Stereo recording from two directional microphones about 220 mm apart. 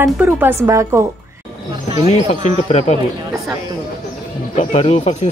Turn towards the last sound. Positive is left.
turn(degrees=30)  # may be behind; listen again after turning